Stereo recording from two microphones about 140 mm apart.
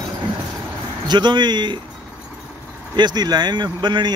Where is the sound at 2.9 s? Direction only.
30° right (ahead or behind).